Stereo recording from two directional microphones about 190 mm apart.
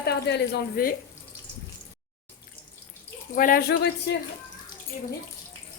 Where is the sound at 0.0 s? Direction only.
60° left (ahead or behind).